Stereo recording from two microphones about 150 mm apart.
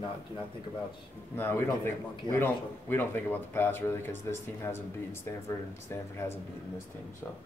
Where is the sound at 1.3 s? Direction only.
15° left (ahead or behind).